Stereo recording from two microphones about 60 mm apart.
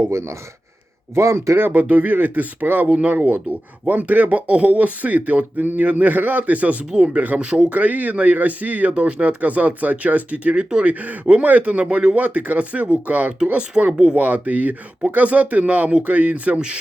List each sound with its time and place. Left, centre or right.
0.1 s speech: right
1.5 s speech: right
6.9 s speech: centre
14.2 s speech: right